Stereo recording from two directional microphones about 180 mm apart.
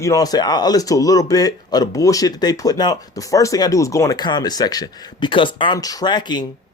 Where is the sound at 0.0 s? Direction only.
20° left (ahead or behind).